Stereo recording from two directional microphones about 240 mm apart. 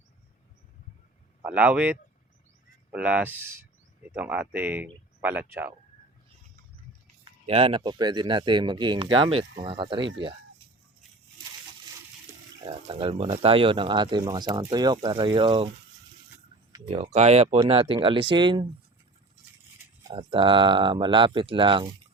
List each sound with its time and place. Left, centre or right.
1.4 s speech: centre
7.4 s speech: right
12.6 s speech: right
16.7 s speech: right
20.1 s speech: right